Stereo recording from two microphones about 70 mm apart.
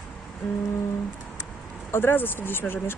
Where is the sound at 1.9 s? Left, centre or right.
Left.